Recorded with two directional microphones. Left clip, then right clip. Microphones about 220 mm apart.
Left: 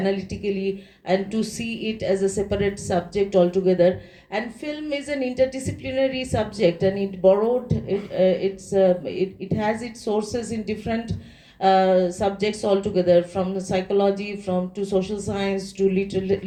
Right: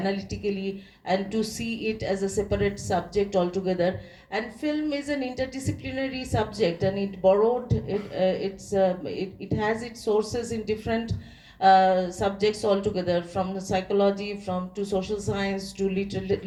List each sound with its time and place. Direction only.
0.0 s a woman's voice: 55° left (ahead or behind)